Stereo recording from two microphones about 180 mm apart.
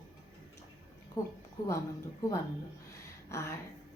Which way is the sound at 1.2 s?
20° left (ahead or behind).